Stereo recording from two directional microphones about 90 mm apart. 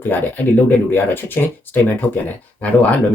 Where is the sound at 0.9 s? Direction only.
25° left (ahead or behind).